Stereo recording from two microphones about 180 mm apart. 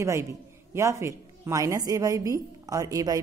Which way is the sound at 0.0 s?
15° right (ahead or behind).